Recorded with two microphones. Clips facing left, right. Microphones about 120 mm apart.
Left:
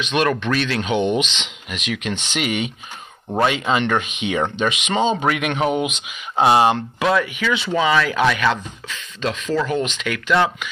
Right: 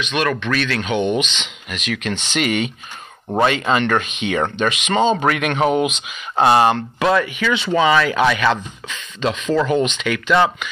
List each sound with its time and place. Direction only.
0.0 s speech: 25° left (ahead or behind)
7.0 s speech: centre (ahead or behind)